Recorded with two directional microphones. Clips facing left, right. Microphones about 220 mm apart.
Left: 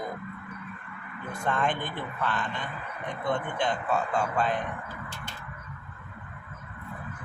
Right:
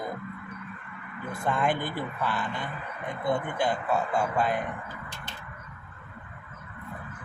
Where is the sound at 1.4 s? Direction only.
10° right (ahead or behind).